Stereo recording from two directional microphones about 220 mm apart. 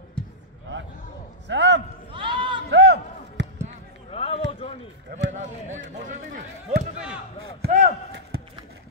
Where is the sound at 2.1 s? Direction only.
20° right (ahead or behind).